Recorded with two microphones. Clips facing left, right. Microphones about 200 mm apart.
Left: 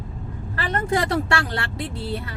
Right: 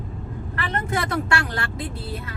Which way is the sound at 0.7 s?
35° left (ahead or behind).